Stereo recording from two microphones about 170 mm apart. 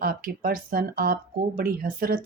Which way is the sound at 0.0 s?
60° right (ahead or behind).